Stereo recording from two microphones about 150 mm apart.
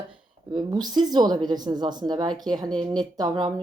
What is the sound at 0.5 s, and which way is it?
Speech, 25° right (ahead or behind).